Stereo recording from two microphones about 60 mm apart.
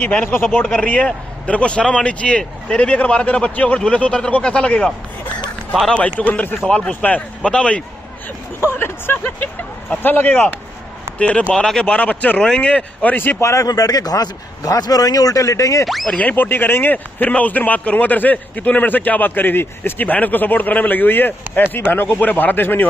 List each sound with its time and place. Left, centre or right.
0.0 s speech: left
0.7 s speech: left
5.9 s speech: left
6.7 s speech: centre
8.7 s speech: left
11.1 s speech: left
11.5 s speech: centre
11.8 s speech: centre
13.1 s speech: left
13.4 s speech: left
13.7 s a man's voice: left
15.8 s speech: centre
16.1 s speech: left